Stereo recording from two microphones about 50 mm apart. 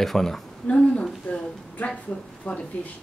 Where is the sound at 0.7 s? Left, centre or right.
Left.